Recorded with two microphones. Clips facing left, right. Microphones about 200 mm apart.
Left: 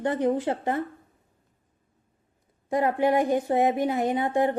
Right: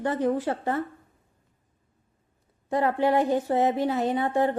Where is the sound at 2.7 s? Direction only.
15° left (ahead or behind).